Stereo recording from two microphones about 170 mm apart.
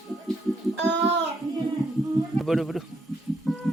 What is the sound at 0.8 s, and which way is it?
Child singing, 90° right.